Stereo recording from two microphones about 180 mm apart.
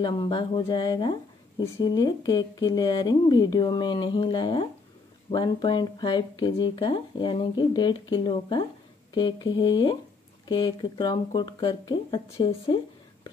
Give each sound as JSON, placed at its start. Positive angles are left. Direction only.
{"t": 0.0, "sound": "speech", "side_deg": 25}